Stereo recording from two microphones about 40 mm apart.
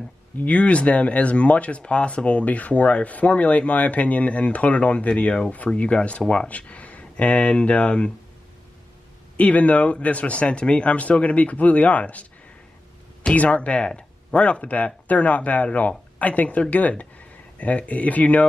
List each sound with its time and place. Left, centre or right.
0.4 s speech: left
5.7 s speech: left
6.5 s speech: left
9.4 s speech: left
13.3 s speech: left